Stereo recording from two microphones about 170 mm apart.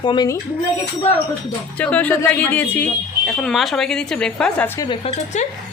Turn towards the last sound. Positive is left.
turn(degrees=5)  # may be behind; listen again after turning